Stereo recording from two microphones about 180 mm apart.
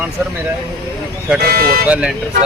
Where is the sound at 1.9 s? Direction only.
5° right (ahead or behind).